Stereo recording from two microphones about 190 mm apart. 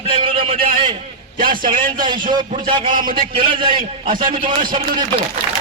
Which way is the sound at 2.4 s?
45° right (ahead or behind).